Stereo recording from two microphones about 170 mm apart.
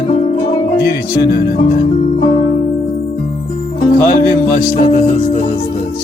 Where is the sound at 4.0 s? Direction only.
55° left (ahead or behind).